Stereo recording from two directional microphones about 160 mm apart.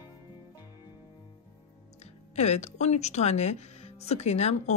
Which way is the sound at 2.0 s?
45° left (ahead or behind).